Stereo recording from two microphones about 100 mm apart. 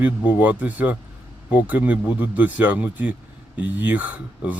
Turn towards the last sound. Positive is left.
turn(degrees=-15)  # may be behind; listen again after turning